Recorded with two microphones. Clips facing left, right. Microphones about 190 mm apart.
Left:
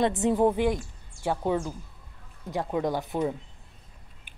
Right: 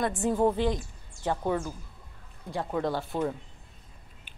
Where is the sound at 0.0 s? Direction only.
20° left (ahead or behind).